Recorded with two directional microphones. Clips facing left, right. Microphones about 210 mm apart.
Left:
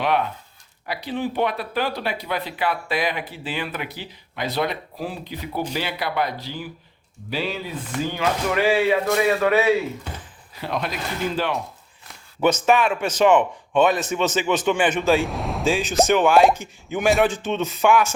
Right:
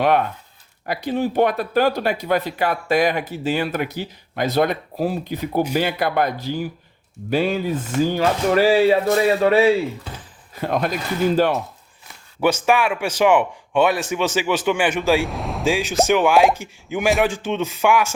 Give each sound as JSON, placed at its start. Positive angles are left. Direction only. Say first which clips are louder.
{"t": 0.0, "sound": "speech", "louder": "right 4 dB", "side_deg": -50}
{"t": 8.1, "sound": "speech", "louder": "right 3 dB", "side_deg": -40}
{"t": 10.5, "sound": "speech", "louder": "right 5 dB", "side_deg": -45}
{"t": 12.0, "sound": "speech", "louder": "right 1 dB", "side_deg": -10}
{"t": 15.3, "sound": "a sound", "louder": "even", "side_deg": 0}
{"t": 15.6, "sound": "speech", "louder": "right 1 dB", "side_deg": -10}